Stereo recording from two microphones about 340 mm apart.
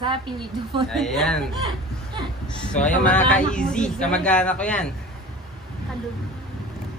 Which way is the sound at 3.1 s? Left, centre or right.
Centre.